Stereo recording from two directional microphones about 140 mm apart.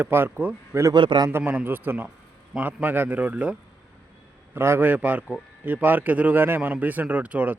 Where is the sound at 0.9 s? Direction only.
35° right (ahead or behind).